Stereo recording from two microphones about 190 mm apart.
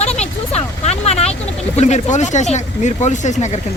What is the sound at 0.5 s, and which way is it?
Speech, 35° left (ahead or behind).